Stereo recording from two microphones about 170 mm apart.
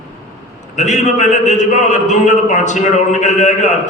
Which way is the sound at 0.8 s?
45° left (ahead or behind).